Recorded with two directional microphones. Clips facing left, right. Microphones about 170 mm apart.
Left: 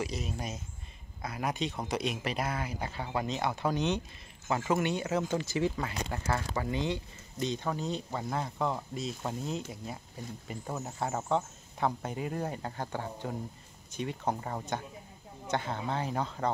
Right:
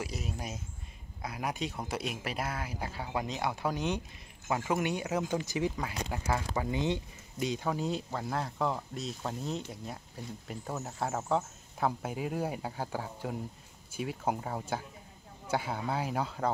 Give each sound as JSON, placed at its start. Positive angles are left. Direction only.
{"t": 0.0, "sound": "speech", "side_deg": -10}
{"t": 7.3, "sound": "speech", "side_deg": -10}